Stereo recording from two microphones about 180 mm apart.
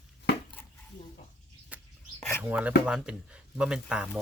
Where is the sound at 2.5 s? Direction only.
10° right (ahead or behind).